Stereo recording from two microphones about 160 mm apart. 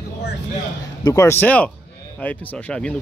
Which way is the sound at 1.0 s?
20° left (ahead or behind).